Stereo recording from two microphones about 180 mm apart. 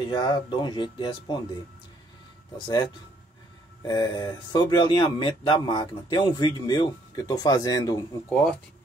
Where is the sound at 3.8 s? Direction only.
25° left (ahead or behind).